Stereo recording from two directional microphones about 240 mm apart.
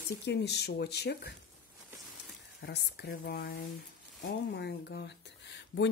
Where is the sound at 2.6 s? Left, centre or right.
Left.